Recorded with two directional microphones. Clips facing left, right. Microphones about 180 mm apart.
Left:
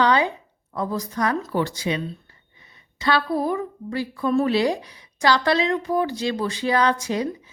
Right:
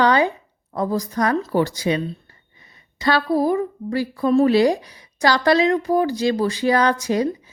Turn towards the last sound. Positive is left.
turn(degrees=-40)  # may be behind; listen again after turning